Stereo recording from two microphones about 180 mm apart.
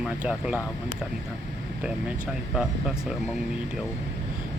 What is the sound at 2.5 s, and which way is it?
Speech, 5° right (ahead or behind).